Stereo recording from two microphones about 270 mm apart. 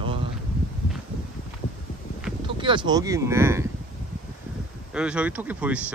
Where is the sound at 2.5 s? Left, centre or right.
Centre.